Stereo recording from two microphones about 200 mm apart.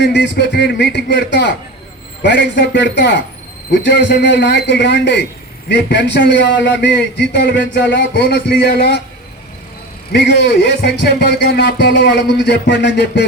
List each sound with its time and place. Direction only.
0.0 s a man's voice: 60° left (ahead or behind)
10.1 s a man's voice: 55° left (ahead or behind)